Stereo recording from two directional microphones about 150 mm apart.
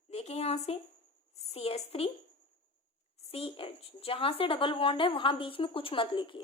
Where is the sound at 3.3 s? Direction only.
40° left (ahead or behind).